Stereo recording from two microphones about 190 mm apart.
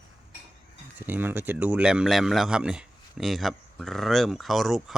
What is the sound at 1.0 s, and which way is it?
Speech, 10° right (ahead or behind).